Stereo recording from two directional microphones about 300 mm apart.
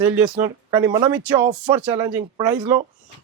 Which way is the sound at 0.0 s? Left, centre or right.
Centre.